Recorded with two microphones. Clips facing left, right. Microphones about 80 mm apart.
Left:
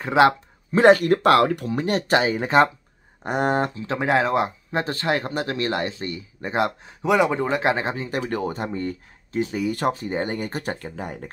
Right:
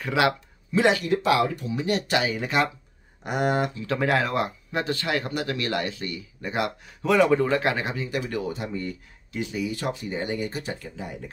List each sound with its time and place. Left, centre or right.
0.0 s speech: left
7.0 s speech: centre; by 11.2 s left